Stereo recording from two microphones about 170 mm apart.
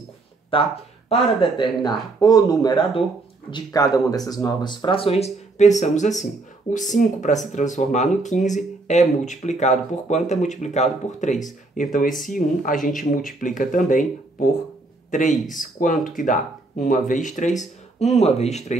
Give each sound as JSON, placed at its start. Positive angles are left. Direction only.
{"t": 0.5, "sound": "a man's voice", "side_deg": 30}